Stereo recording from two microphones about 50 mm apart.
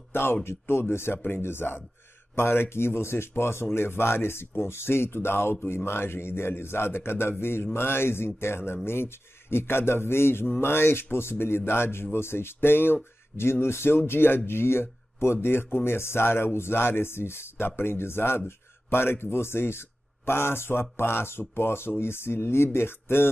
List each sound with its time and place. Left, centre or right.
0.1 s speech: left